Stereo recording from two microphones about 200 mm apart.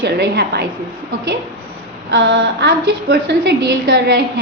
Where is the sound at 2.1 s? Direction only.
65° right (ahead or behind).